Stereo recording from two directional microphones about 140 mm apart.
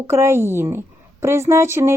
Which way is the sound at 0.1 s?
20° right (ahead or behind).